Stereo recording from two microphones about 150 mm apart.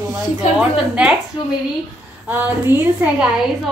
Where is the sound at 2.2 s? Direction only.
10° right (ahead or behind).